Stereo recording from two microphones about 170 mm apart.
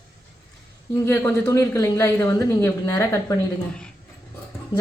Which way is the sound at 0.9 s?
15° left (ahead or behind).